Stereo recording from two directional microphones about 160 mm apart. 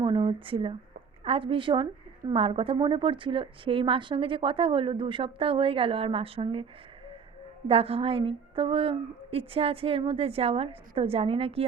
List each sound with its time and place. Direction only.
0.0 s a woman's voice: 30° right (ahead or behind)
7.7 s a woman's voice: 35° right (ahead or behind)